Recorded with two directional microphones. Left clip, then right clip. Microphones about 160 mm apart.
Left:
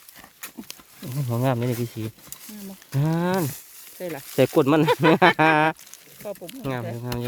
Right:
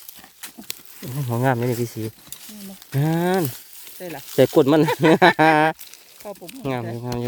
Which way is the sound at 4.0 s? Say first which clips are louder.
Left 1 dB; 60° left (ahead or behind).